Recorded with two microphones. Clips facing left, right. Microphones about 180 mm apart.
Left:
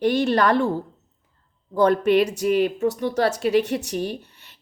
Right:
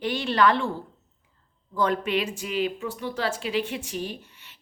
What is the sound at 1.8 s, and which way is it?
Speech, 40° left (ahead or behind).